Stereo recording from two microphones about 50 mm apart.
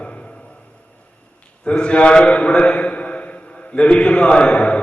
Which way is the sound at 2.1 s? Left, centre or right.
Left.